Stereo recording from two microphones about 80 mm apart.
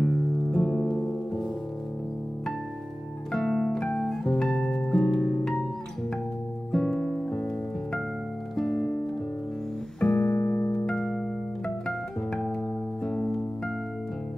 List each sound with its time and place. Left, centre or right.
0.0 s music: centre
0.6 s music: centre
3.3 s music: centre
6.7 s music: centre
8.5 s music: centre
9.9 s music: centre
10.9 s music: centre
13.0 s music: centre